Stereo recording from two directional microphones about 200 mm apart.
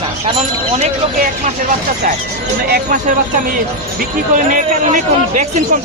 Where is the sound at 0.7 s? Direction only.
35° right (ahead or behind).